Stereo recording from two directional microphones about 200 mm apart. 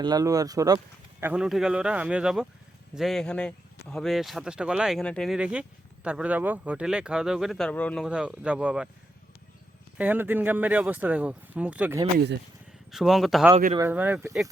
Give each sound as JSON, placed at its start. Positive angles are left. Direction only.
{"t": 0.0, "sound": "speech", "side_deg": -20}
{"t": 1.2, "sound": "speech", "side_deg": -5}
{"t": 8.0, "sound": "speech", "side_deg": -5}
{"t": 10.0, "sound": "speech", "side_deg": -10}